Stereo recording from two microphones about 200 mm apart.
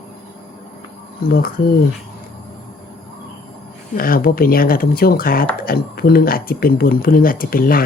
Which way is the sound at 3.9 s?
45° left (ahead or behind).